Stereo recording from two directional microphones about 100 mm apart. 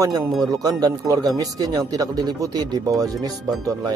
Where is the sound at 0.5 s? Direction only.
35° right (ahead or behind).